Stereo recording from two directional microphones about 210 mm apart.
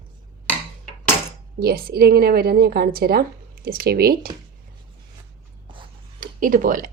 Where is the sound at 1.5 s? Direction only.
45° right (ahead or behind).